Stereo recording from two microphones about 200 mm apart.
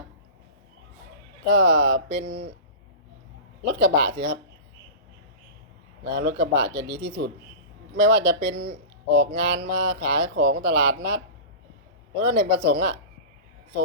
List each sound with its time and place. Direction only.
1.5 s speech: 55° right (ahead or behind)
3.6 s speech: 55° right (ahead or behind)
6.1 s speech: 55° right (ahead or behind)
12.2 s speech: 55° right (ahead or behind)